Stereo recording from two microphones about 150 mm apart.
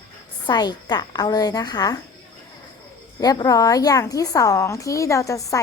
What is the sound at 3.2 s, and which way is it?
A woman's voice, 25° left (ahead or behind).